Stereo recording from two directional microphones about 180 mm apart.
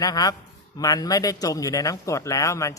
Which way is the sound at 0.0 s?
20° left (ahead or behind).